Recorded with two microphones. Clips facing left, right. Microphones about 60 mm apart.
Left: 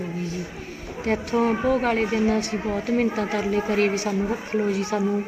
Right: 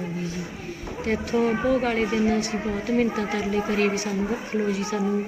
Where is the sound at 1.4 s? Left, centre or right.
Left.